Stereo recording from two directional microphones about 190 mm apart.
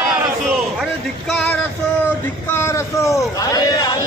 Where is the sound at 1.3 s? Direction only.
5° left (ahead or behind).